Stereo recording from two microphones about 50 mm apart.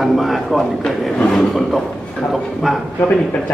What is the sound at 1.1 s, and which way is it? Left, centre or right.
Speech, centre.